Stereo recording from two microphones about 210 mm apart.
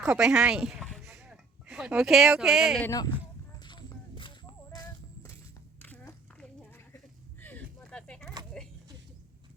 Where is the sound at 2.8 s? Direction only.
15° left (ahead or behind).